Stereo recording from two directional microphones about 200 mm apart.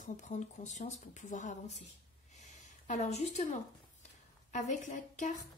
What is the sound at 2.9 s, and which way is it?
Speech, 35° left (ahead or behind).